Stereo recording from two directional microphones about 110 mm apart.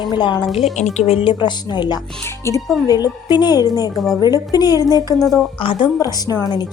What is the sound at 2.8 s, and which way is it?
Speech, 35° left (ahead or behind).